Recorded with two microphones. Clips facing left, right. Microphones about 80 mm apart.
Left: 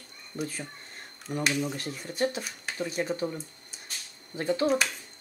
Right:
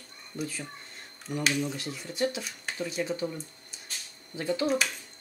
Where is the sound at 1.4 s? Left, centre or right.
Centre.